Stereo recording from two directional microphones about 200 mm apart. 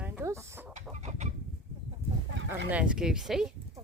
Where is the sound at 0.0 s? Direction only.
15° right (ahead or behind).